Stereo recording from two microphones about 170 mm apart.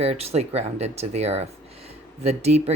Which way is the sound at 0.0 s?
35° right (ahead or behind).